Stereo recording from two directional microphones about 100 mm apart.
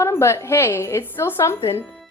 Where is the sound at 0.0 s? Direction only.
30° left (ahead or behind).